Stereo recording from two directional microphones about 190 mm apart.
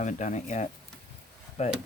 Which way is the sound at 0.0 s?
40° left (ahead or behind).